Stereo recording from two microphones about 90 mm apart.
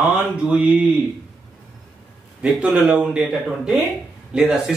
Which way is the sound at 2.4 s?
10° right (ahead or behind).